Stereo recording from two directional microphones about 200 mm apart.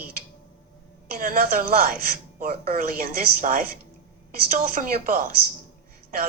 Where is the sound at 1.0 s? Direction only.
45° right (ahead or behind).